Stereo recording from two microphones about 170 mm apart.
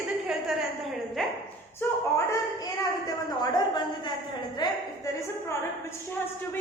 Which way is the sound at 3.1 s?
25° left (ahead or behind).